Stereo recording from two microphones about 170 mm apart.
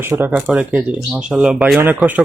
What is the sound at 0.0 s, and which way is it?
Speech, 10° right (ahead or behind).